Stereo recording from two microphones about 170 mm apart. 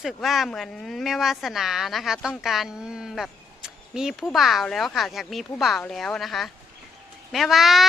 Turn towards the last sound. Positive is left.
turn(degrees=0)  # may be behind; listen again after turning